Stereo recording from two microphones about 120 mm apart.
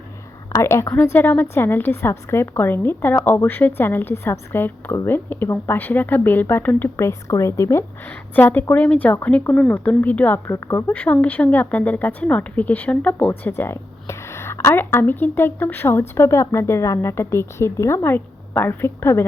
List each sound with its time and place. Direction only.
0.5 s a woman's voice: 20° left (ahead or behind)
10.9 s speech: 10° left (ahead or behind)
13.5 s a woman's voice: 20° left (ahead or behind)